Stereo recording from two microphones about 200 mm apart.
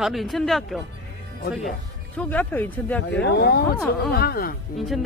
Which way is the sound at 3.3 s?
55° left (ahead or behind).